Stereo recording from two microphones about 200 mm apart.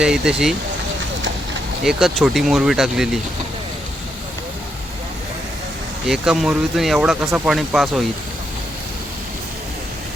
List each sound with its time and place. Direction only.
0.0 s speech: 5° right (ahead or behind)
1.8 s speech: centre (ahead or behind)
6.1 s speech: centre (ahead or behind)